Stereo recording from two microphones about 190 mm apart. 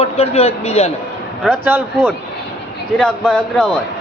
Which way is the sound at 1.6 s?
10° right (ahead or behind).